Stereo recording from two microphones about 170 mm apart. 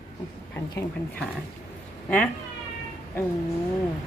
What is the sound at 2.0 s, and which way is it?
Speech, 5° left (ahead or behind).